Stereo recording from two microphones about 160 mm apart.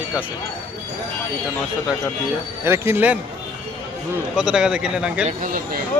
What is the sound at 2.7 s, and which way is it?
Speech, 15° right (ahead or behind).